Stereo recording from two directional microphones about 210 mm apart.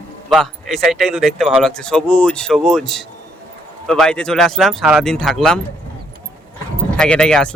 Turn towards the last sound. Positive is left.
turn(degrees=5)  # may be behind; listen again after turning